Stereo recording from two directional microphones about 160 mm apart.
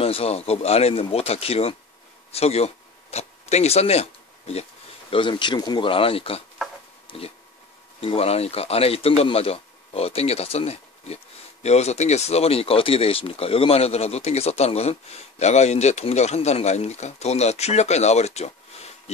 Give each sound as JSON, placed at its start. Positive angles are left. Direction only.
{"t": 0.0, "sound": "speech", "side_deg": 40}
{"t": 5.1, "sound": "a man's voice", "side_deg": 30}